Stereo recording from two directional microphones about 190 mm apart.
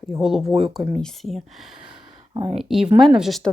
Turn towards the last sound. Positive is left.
turn(degrees=0)  # may be behind; listen again after turning